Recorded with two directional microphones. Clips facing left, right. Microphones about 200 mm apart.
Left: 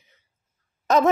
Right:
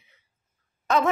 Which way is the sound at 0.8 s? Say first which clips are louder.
Left 4 dB; 40° left (ahead or behind).